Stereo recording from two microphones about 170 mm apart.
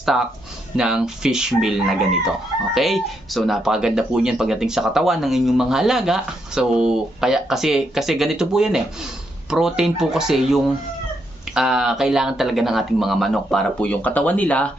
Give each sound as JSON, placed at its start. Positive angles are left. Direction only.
{"t": 0.8, "sound": "speech", "side_deg": -5}